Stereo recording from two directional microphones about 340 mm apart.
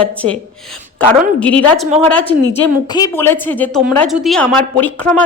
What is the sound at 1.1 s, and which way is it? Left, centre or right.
Speech, centre.